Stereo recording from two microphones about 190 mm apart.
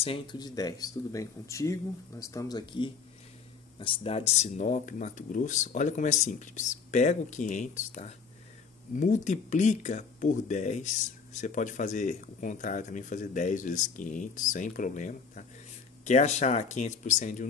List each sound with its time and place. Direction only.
0.0 s speech: 25° left (ahead or behind); by 17.5 s 40° left (ahead or behind)